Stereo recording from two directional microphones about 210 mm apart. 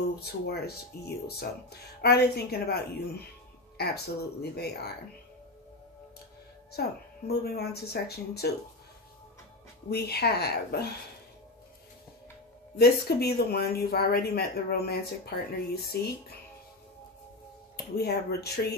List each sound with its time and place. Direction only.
0.2 s speech: 50° left (ahead or behind)
7.2 s speech: 50° left (ahead or behind)
9.8 s speech: 50° left (ahead or behind)
12.7 s speech: 50° left (ahead or behind)
17.9 s speech: 50° left (ahead or behind)